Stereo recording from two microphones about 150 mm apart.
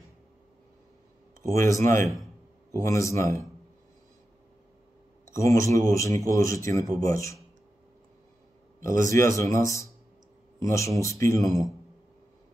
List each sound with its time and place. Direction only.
1.5 s speech: 20° left (ahead or behind)
5.3 s speech: 20° left (ahead or behind)
9.0 s speech: 20° left (ahead or behind)